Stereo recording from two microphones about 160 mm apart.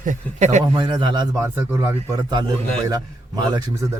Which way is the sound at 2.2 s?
25° right (ahead or behind).